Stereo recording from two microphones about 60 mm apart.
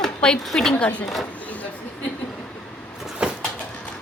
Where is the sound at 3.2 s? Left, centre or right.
Centre.